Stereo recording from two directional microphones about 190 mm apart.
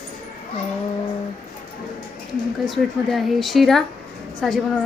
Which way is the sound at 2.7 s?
Centre (ahead or behind).